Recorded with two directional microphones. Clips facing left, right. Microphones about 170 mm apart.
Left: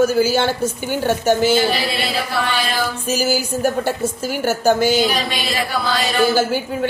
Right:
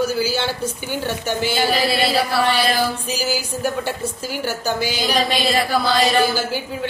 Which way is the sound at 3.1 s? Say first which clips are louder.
Left 4 dB; 45° left (ahead or behind).